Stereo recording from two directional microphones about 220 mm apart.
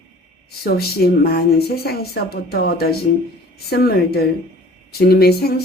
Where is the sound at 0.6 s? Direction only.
45° left (ahead or behind).